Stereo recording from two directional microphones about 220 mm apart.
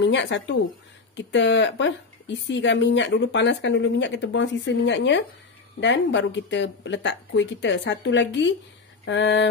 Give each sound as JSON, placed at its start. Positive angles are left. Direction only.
{"t": 0.0, "sound": "speech", "side_deg": 55}